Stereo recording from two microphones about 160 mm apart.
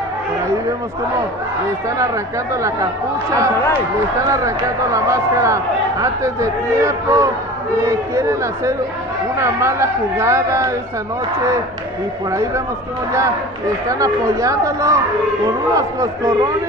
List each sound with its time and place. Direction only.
2.5 s speech: 20° right (ahead or behind)
12.3 s speech: 20° right (ahead or behind)
13.8 s speech: 20° right (ahead or behind)